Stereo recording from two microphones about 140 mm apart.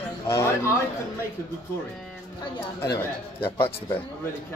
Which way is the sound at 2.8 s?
20° left (ahead or behind).